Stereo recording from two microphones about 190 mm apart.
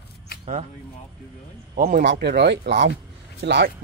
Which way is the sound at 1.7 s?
45° right (ahead or behind).